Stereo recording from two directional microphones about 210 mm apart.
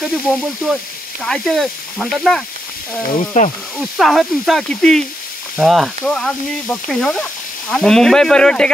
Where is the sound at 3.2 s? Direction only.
35° left (ahead or behind).